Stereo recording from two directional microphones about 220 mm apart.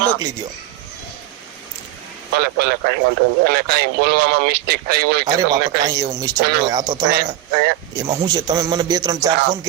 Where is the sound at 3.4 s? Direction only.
45° right (ahead or behind).